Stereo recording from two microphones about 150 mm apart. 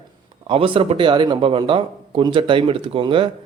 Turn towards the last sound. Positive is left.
turn(degrees=-35)  # may be behind; listen again after turning